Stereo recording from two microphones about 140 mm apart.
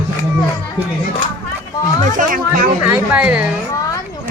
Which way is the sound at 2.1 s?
85° right.